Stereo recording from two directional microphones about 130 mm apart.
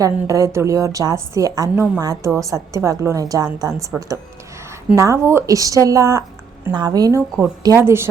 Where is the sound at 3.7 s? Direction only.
5° right (ahead or behind).